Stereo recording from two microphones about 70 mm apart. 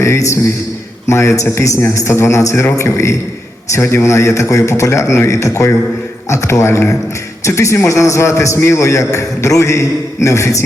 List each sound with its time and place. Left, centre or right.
0.0 s a man's voice: left